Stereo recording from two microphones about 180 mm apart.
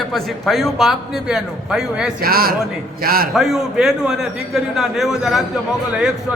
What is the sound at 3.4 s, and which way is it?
A man's voice, centre (ahead or behind).